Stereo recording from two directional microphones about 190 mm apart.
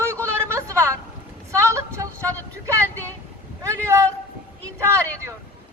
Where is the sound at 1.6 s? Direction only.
15° right (ahead or behind).